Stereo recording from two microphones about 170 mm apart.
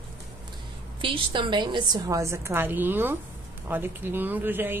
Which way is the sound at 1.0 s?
30° right (ahead or behind).